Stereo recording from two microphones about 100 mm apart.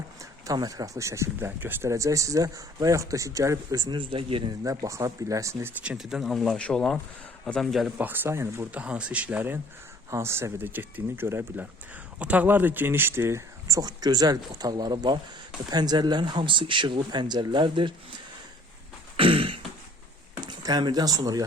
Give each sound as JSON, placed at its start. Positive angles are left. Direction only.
{"t": 0.2, "sound": "speech", "side_deg": -40}
{"t": 1.9, "sound": "speech", "side_deg": -30}
{"t": 3.8, "sound": "speech", "side_deg": -55}
{"t": 4.6, "sound": "speech", "side_deg": -35}
{"t": 5.8, "sound": "speech", "side_deg": -10}
{"t": 6.6, "sound": "speech", "side_deg": 10}
{"t": 7.9, "sound": "speech", "side_deg": -20}
{"t": 8.7, "sound": "speech", "side_deg": -10}
{"t": 10.1, "sound": "speech", "side_deg": -25}
{"t": 19.1, "sound": "throat clearing", "side_deg": -65}
{"t": 20.4, "sound": "speech", "side_deg": -45}